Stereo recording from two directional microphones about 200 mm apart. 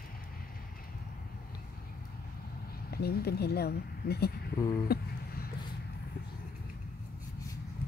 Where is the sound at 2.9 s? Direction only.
50° left (ahead or behind).